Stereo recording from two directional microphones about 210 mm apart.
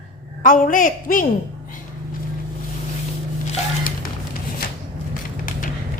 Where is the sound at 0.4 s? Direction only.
40° left (ahead or behind).